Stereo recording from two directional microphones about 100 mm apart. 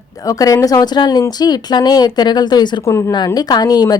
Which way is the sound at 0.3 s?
35° left (ahead or behind).